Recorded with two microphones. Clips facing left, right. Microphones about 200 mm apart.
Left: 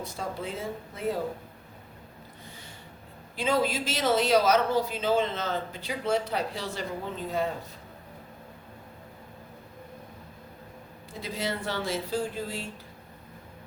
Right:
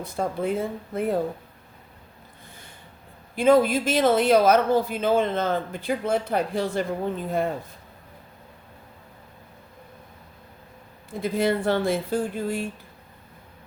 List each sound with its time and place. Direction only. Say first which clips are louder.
0.0 s speech: right 8 dB; 55° right (ahead or behind)
3.3 s speech: right 9 dB; 55° right (ahead or behind)
11.1 s speech: right 9 dB; 55° right (ahead or behind)